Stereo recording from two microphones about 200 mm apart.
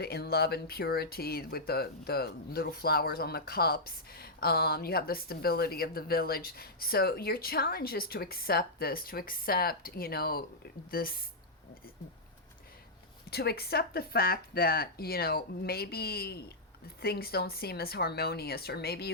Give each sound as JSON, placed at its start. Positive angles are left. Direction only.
{"t": 0.0, "sound": "speech", "side_deg": 50}
{"t": 13.3, "sound": "speech", "side_deg": 50}